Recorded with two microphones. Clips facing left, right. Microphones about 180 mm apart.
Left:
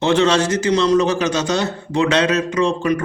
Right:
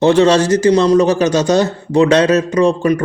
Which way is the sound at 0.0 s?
35° right (ahead or behind).